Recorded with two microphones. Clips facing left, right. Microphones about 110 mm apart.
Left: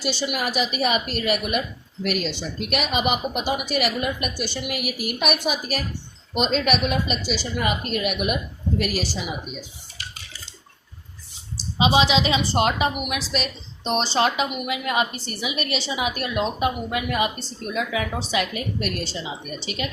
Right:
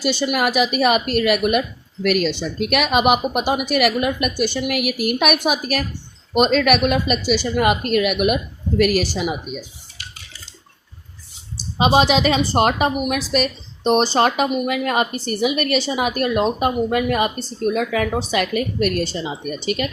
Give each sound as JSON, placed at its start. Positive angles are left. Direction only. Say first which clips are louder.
{"t": 0.0, "sound": "a woman's voice", "louder": "right 6 dB", "side_deg": -55}
{"t": 11.8, "sound": "a woman's voice", "louder": "right 4 dB", "side_deg": -50}